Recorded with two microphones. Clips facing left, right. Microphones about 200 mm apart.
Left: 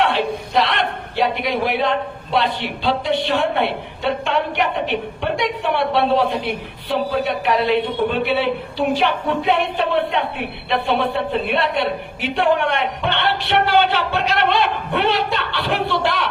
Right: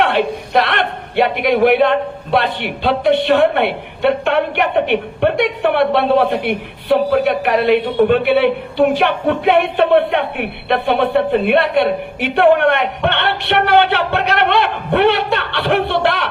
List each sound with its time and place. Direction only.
0.0 s a man's voice: 60° right (ahead or behind)